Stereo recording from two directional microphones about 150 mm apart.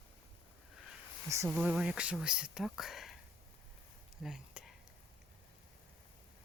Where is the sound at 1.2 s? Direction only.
20° right (ahead or behind).